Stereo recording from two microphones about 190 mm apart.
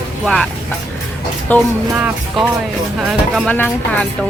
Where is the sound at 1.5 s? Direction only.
10° left (ahead or behind).